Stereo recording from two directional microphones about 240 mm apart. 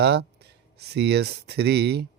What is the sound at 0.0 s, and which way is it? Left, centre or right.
Speech, right.